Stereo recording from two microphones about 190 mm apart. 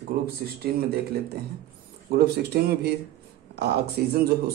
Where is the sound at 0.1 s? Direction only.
50° right (ahead or behind).